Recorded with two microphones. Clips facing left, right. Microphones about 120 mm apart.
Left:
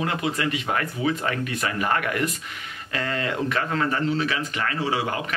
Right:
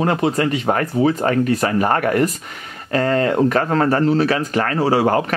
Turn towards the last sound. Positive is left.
turn(degrees=-45)  # may be behind; listen again after turning